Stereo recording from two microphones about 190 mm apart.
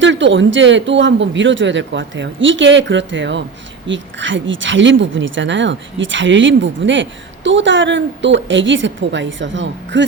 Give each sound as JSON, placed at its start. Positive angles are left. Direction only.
{"t": 0.0, "sound": "speech", "side_deg": -75}